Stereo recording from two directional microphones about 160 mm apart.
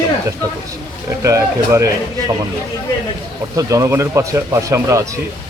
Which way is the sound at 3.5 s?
20° right (ahead or behind).